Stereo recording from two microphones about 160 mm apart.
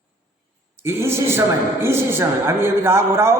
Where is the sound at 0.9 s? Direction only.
15° right (ahead or behind).